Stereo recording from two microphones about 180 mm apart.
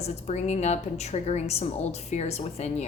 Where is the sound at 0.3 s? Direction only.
40° left (ahead or behind).